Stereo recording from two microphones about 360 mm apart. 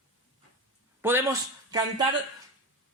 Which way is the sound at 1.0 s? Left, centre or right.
Centre.